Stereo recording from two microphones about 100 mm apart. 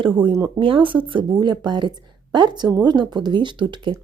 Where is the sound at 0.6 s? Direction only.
60° right (ahead or behind).